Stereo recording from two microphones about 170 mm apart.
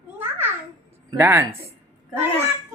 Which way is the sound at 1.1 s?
15° right (ahead or behind).